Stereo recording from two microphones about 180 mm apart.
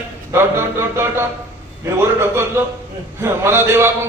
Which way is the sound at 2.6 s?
10° right (ahead or behind).